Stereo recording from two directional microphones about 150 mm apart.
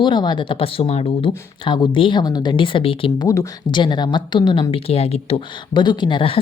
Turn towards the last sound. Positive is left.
turn(degrees=35)  # may be behind; listen again after turning